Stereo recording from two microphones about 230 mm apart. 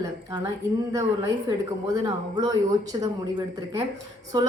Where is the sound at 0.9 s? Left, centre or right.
Centre.